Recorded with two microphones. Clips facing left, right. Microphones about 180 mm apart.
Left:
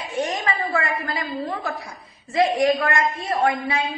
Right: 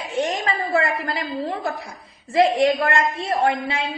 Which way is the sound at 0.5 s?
30° right (ahead or behind).